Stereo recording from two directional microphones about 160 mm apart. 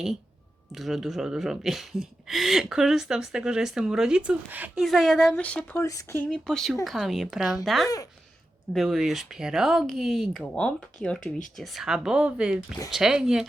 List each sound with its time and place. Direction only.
0.7 s speech: centre (ahead or behind)
5.8 s speech: 20° left (ahead or behind)
6.3 s speech: 5° left (ahead or behind)